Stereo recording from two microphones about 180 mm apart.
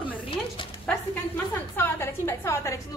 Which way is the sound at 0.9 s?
10° left (ahead or behind).